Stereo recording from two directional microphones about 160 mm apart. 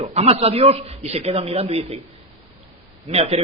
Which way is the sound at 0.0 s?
40° right (ahead or behind).